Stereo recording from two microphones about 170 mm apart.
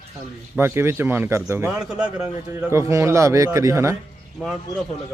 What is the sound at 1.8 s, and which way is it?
Speech, 5° right (ahead or behind).